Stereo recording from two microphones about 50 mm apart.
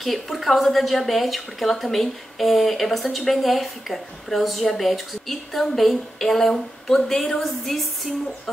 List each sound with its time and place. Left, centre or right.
0.0 s speech: centre